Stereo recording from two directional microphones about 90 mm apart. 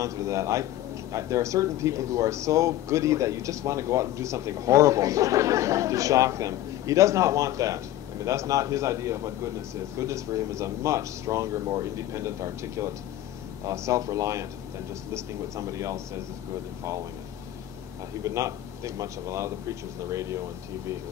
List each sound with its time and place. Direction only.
0.0 s a man's voice: 35° right (ahead or behind)
18.2 s a man's voice: 35° right (ahead or behind)